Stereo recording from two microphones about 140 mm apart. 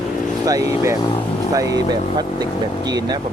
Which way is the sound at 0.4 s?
25° right (ahead or behind).